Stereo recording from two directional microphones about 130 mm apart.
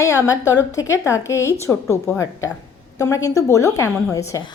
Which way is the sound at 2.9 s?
25° left (ahead or behind).